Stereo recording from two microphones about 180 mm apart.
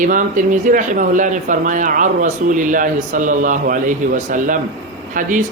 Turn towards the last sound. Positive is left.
turn(degrees=-45)  # may be behind; listen again after turning